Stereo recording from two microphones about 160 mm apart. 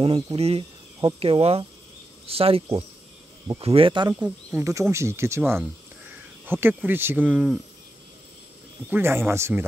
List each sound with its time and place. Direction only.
0.0 s speech: 35° right (ahead or behind)
4.1 s speech: 10° right (ahead or behind)
6.4 s speech: 15° right (ahead or behind)
8.9 s speech: 15° right (ahead or behind)